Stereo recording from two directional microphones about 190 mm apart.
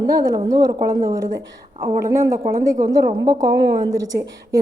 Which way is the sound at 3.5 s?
70° right (ahead or behind).